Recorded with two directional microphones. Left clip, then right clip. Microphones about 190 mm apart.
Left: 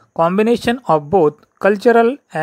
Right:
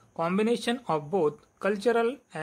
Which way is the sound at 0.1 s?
40° left (ahead or behind).